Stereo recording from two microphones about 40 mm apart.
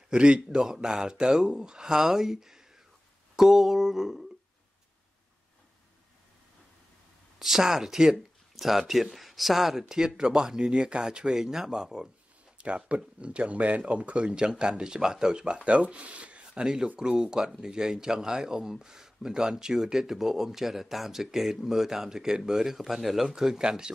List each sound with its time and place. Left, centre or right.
0.1 s speech: right
1.8 s speech: centre
7.3 s speech: centre
12.5 s speech: right
17.2 s speech: centre